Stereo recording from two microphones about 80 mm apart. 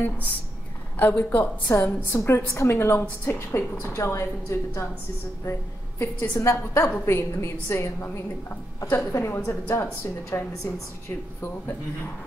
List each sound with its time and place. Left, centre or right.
0.9 s a woman's voice: left
8.9 s a woman's voice: left